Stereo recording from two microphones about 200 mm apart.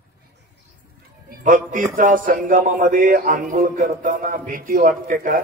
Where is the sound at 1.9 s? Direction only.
40° right (ahead or behind).